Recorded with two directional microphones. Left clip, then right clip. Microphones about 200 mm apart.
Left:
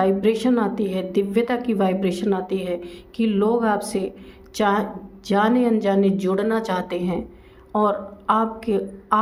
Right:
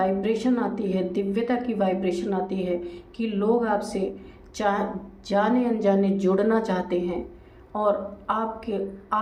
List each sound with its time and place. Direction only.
0.0 s a woman's voice: 45° left (ahead or behind)